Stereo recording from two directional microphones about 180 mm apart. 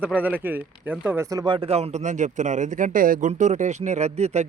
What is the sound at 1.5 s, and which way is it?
Speech, 35° right (ahead or behind).